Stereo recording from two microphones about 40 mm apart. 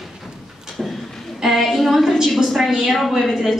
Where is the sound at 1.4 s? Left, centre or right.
Centre.